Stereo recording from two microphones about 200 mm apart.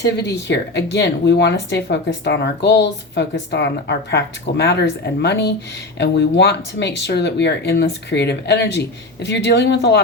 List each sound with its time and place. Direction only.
0.0 s speech: 60° left (ahead or behind)